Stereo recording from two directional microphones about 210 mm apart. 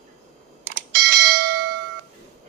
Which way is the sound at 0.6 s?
40° right (ahead or behind).